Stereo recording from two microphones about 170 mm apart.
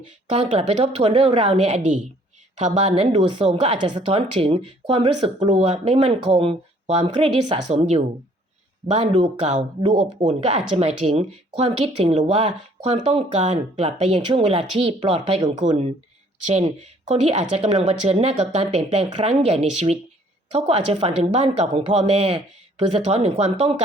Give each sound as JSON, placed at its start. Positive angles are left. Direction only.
{"t": 0.3, "sound": "speech", "side_deg": -40}
{"t": 17.1, "sound": "speech", "side_deg": -40}